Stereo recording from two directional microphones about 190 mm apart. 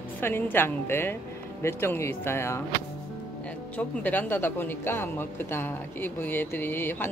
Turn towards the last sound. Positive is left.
turn(degrees=10)  # may be behind; listen again after turning